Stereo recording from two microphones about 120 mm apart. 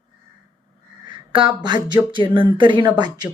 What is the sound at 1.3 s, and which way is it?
A woman's voice, 40° right (ahead or behind).